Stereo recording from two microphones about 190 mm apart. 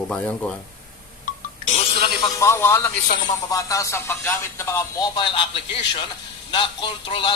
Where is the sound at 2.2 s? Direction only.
20° left (ahead or behind).